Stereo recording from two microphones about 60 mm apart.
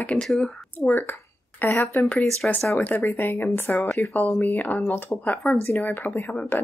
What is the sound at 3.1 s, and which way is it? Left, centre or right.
Speech, left.